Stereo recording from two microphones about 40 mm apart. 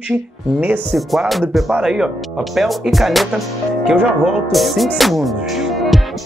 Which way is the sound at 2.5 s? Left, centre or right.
Centre.